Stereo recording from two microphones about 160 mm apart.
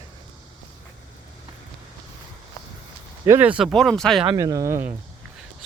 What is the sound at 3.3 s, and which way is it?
Speech, 10° right (ahead or behind).